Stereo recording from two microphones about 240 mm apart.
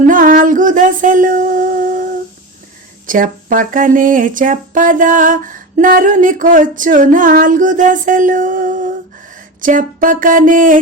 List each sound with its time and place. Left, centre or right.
0.0 s music: right
3.1 s speech: right